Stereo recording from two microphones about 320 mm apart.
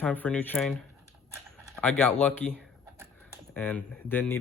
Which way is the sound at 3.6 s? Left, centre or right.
Centre.